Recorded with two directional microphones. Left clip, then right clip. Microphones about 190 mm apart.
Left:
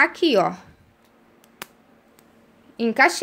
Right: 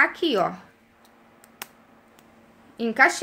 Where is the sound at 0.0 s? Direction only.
35° left (ahead or behind).